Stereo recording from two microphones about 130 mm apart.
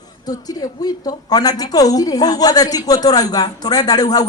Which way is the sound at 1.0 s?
30° left (ahead or behind).